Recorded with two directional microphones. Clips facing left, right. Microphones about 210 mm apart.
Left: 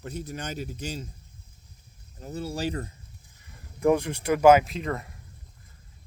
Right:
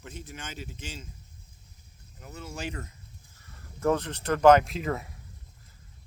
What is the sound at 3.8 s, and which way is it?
Speech, 10° left (ahead or behind).